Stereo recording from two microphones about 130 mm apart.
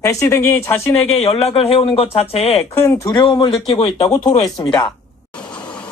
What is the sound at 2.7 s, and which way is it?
Speech, 20° left (ahead or behind).